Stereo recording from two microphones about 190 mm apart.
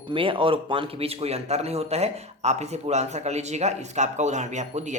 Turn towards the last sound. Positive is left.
turn(degrees=-35)  # may be behind; listen again after turning